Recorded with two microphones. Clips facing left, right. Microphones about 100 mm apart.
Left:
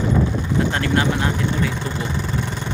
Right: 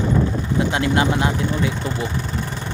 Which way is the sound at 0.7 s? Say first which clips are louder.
Right 1 dB; 20° right (ahead or behind).